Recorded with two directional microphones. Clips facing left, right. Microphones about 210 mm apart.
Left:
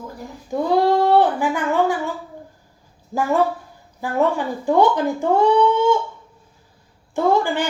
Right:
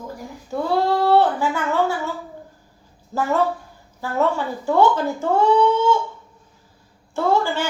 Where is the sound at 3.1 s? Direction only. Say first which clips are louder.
Left 2 dB; 15° left (ahead or behind).